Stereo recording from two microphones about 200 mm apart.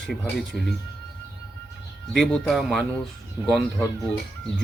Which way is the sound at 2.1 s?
5° left (ahead or behind).